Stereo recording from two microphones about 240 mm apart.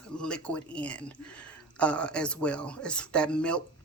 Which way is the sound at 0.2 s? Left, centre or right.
Centre.